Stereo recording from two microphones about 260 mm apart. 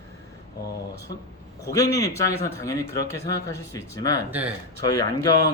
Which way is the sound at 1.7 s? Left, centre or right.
Centre.